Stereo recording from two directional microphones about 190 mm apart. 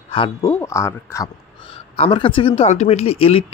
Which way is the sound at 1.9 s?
30° left (ahead or behind).